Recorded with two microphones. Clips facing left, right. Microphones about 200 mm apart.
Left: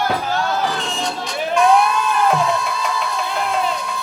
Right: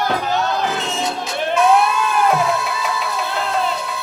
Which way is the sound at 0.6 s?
5° right (ahead or behind).